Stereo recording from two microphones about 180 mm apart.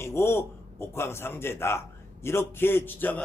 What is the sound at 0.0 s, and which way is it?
A man's voice, 15° left (ahead or behind).